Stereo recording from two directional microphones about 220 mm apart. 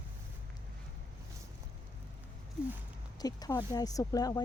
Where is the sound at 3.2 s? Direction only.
15° left (ahead or behind).